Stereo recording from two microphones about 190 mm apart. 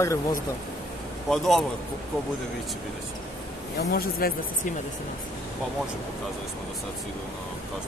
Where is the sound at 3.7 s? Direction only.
50° left (ahead or behind).